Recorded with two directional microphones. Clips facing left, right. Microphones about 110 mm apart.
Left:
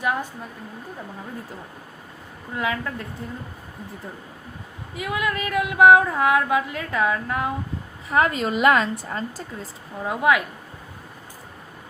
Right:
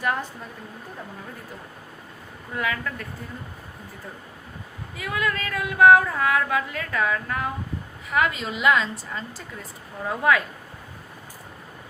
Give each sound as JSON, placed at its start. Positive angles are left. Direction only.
{"t": 0.0, "sound": "a woman's voice", "side_deg": 15}
{"t": 2.6, "sound": "a woman's voice", "side_deg": 25}
{"t": 4.9, "sound": "a woman's voice", "side_deg": 20}
{"t": 8.1, "sound": "a woman's voice", "side_deg": 40}
{"t": 10.1, "sound": "speech", "side_deg": 15}